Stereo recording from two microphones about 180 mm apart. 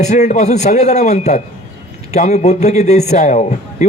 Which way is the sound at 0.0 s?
40° left (ahead or behind).